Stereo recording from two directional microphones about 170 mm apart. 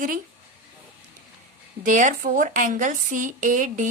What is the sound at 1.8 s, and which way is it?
A woman's voice, 50° right (ahead or behind).